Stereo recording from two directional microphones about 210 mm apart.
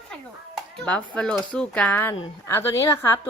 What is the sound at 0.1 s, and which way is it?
A woman's voice, 5° left (ahead or behind).